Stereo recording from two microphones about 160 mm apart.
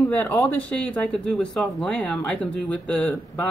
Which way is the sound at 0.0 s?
10° left (ahead or behind).